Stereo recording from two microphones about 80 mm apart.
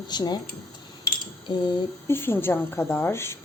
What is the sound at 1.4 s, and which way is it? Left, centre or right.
Speech, left.